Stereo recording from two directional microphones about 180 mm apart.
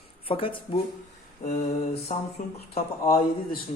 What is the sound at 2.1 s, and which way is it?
Speech, 40° left (ahead or behind).